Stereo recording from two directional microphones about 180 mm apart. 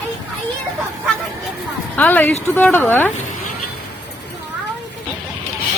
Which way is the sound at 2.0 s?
10° left (ahead or behind).